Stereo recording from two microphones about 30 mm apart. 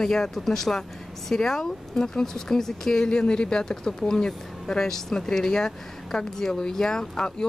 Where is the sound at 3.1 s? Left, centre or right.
Left.